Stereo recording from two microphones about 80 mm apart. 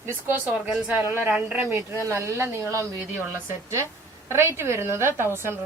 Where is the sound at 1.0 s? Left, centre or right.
Right.